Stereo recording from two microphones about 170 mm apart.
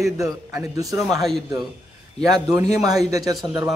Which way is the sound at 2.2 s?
20° right (ahead or behind).